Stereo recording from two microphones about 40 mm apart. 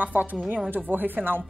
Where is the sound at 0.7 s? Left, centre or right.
Right.